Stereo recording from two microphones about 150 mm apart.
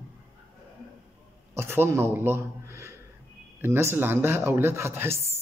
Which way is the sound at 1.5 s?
15° right (ahead or behind).